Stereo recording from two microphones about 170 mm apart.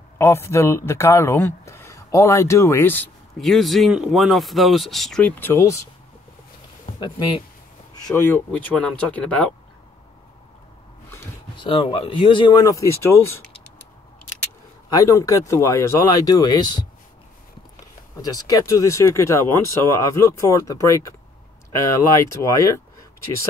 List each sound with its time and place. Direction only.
0.2 s speech: 15° left (ahead or behind)
3.3 s speech: centre (ahead or behind)
7.0 s speech: 25° left (ahead or behind)
8.1 s speech: 15° left (ahead or behind)
11.5 s speech: 30° left (ahead or behind); by 13.4 s 15° left (ahead or behind)
14.9 s speech: 20° left (ahead or behind)
18.2 s speech: 20° left (ahead or behind)
22.2 s speech: 15° left (ahead or behind)